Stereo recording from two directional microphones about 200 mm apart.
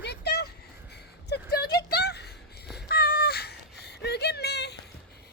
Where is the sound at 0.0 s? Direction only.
55° left (ahead or behind).